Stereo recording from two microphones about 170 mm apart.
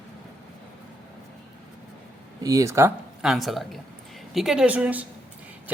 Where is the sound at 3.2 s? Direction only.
Centre (ahead or behind).